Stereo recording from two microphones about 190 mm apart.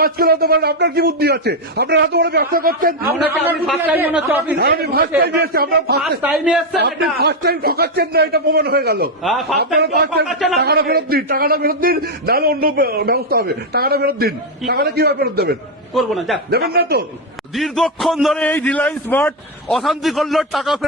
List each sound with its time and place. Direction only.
0.0 s a man's voice: 55° right (ahead or behind)
3.7 s speech: 10° right (ahead or behind)
4.5 s a man's voice: 55° right (ahead or behind)
6.0 s speech: 5° right (ahead or behind)
6.7 s a man's voice: 60° right (ahead or behind)
10.2 s a man's voice: centre (ahead or behind)
10.6 s a man's voice: 55° right (ahead or behind)
16.0 s a man's voice: centre (ahead or behind)
16.5 s a man's voice: 55° right (ahead or behind)
17.5 s a man's voice: centre (ahead or behind)